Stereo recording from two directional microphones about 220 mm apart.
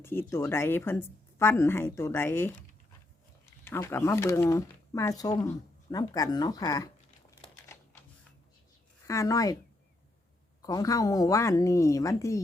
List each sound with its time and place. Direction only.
0.0 s a woman's voice: 10° left (ahead or behind)
3.6 s a woman's voice: 10° left (ahead or behind)
5.9 s crumpling: 15° left (ahead or behind)
9.0 s a woman's voice: 15° left (ahead or behind)
10.6 s a woman's voice: 15° left (ahead or behind)